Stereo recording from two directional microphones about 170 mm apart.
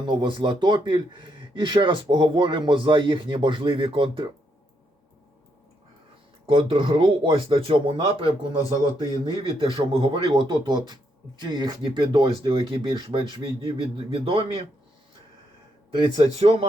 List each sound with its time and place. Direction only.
0.0 s speech: 25° right (ahead or behind)
6.4 s speech: 30° right (ahead or behind)
8.5 s speech: 20° left (ahead or behind)
9.4 s speech: 30° right (ahead or behind)
15.9 s speech: 30° right (ahead or behind)